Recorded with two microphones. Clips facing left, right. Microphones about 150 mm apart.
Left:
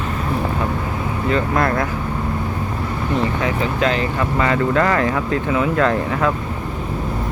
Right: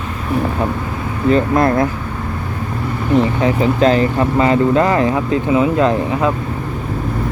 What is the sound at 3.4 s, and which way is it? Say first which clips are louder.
Speech: right 6 dB; 35° right (ahead or behind).